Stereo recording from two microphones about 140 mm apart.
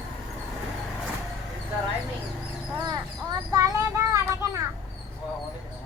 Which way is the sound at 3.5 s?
25° right (ahead or behind).